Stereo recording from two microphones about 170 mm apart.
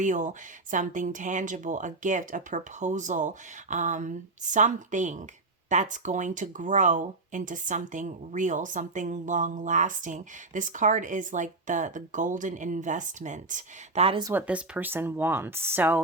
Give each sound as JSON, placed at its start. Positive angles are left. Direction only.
{"t": 0.0, "sound": "speech", "side_deg": -50}
{"t": 14.3, "sound": "speech", "side_deg": -5}